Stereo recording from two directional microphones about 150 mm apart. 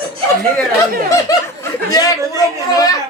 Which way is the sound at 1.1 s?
25° left (ahead or behind).